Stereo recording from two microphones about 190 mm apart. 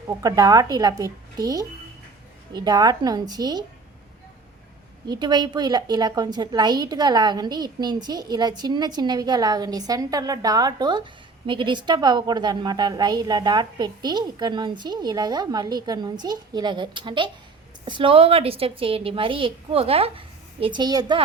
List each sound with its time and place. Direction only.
0.2 s a woman's voice: 20° right (ahead or behind)
5.0 s a woman's voice: 20° right (ahead or behind)